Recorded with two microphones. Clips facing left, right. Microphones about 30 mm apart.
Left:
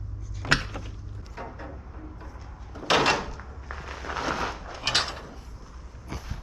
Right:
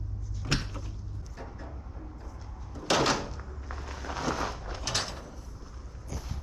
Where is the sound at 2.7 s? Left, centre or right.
Left.